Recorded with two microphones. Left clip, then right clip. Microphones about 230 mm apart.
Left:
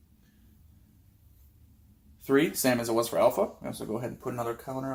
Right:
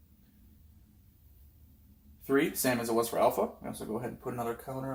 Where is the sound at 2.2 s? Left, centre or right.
Left.